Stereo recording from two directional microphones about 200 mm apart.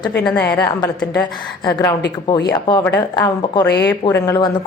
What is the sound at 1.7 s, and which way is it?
A woman's voice, 20° left (ahead or behind).